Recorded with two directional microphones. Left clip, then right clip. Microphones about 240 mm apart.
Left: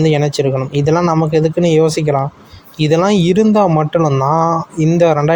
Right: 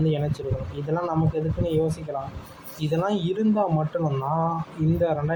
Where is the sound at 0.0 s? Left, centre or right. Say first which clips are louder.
Left 13 dB; left.